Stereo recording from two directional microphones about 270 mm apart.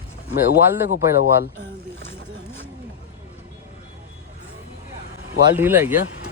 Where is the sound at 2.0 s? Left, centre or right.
Centre.